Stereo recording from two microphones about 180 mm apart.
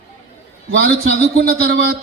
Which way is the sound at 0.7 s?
60° right (ahead or behind).